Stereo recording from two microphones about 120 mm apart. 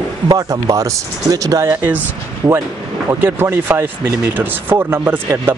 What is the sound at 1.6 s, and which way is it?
Speech, 15° right (ahead or behind).